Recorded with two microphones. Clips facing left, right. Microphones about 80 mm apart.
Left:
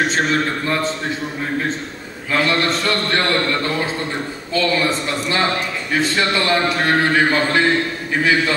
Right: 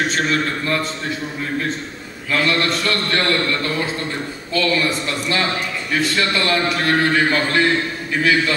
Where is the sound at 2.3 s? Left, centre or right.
Left.